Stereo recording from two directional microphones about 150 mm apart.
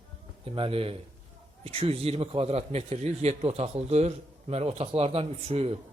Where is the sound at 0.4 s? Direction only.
40° right (ahead or behind).